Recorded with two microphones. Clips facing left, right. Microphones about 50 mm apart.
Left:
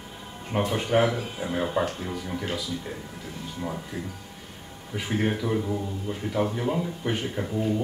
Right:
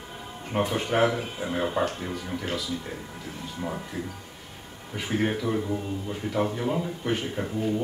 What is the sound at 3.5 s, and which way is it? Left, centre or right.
Speech, centre.